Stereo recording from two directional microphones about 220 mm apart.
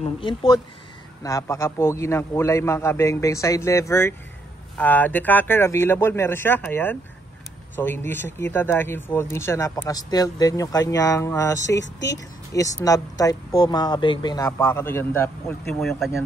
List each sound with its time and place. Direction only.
0.0 s speech: 20° left (ahead or behind); by 16.2 s centre (ahead or behind)